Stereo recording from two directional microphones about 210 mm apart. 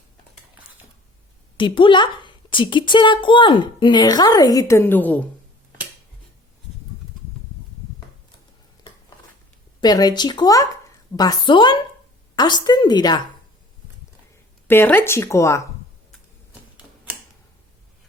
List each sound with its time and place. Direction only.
1.5 s a woman's voice: 25° left (ahead or behind); by 5.2 s 10° left (ahead or behind)
9.8 s a woman's voice: 20° left (ahead or behind)
14.7 s speech: 10° left (ahead or behind)